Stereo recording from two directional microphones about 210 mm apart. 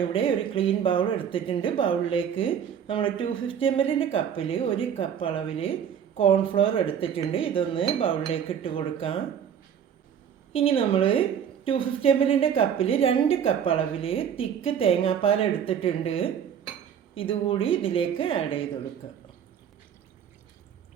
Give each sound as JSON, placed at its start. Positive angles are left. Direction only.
{"t": 0.0, "sound": "a woman's voice", "side_deg": 25}
{"t": 10.5, "sound": "a woman's voice", "side_deg": 25}